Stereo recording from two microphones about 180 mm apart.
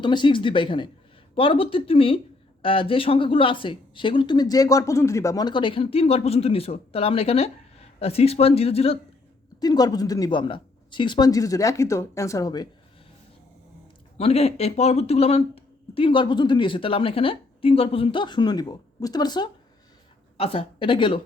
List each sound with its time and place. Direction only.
0.0 s speech: 25° left (ahead or behind)
9.6 s speech: 20° left (ahead or behind)
14.2 s speech: 35° left (ahead or behind)